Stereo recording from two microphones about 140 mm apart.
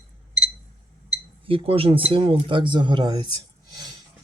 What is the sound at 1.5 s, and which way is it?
Speech, 40° right (ahead or behind).